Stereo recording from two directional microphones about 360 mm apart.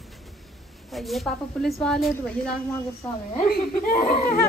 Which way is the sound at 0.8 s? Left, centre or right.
Centre.